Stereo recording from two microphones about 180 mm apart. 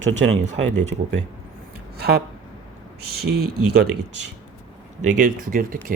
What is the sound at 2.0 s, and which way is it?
Speech, 60° right (ahead or behind).